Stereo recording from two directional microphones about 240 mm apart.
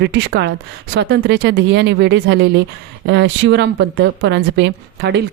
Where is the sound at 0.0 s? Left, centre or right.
Right.